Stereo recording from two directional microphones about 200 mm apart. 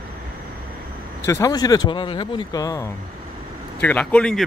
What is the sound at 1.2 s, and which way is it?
Speech, 15° left (ahead or behind).